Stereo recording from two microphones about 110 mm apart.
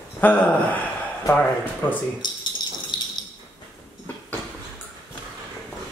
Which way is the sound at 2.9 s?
45° left (ahead or behind).